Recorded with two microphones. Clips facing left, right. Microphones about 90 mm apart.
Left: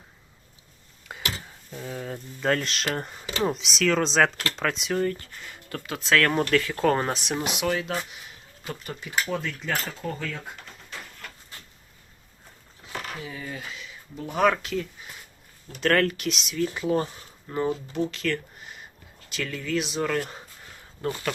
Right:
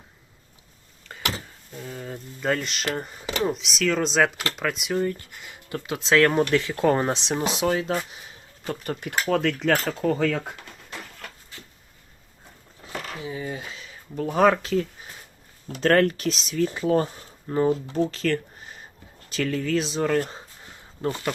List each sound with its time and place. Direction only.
1.1 s a sound: 5° left (ahead or behind)
1.7 s speech: 5° left (ahead or behind); by 6.7 s 20° right (ahead or behind)
6.7 s speech: 10° right (ahead or behind)
7.1 s speech: 25° right (ahead or behind)
8.8 s speech: 55° right (ahead or behind)
9.3 s speech: 90° right
13.1 s speech: 25° right (ahead or behind)
18.1 s a sound: 35° right (ahead or behind)
19.3 s speech: 35° right (ahead or behind)
20.7 s a sound: 25° right (ahead or behind)